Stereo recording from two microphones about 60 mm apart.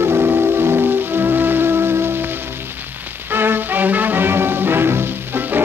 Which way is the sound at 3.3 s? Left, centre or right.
Right.